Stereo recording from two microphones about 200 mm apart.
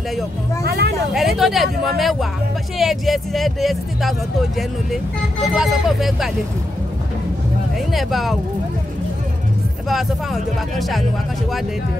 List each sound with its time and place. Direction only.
0.7 s a sound: 50° right (ahead or behind)
1.1 s speech: centre (ahead or behind)
5.5 s speech: centre (ahead or behind)
7.9 s speech: centre (ahead or behind)
9.8 s speech: centre (ahead or behind)